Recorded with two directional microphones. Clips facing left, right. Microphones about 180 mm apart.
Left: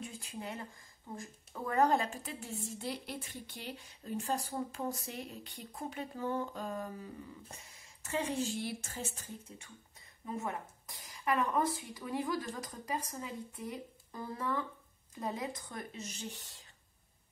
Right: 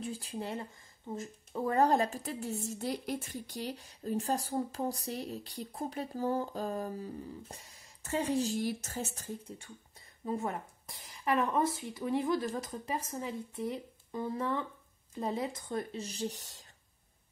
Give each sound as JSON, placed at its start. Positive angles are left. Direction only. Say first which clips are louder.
{"t": 0.0, "sound": "a woman's voice", "louder": "right 5 dB", "side_deg": -35}